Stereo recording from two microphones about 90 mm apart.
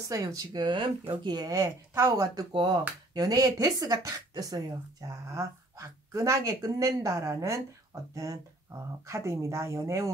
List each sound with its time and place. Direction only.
0.0 s speech: 40° right (ahead or behind)
0.5 s speech: 60° right (ahead or behind); by 10.1 s 30° right (ahead or behind)